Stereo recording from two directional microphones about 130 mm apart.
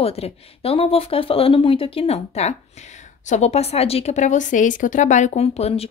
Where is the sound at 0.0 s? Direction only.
50° left (ahead or behind).